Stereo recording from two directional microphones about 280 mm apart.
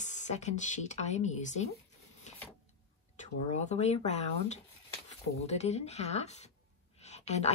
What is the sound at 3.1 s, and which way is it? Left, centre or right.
Speech, left.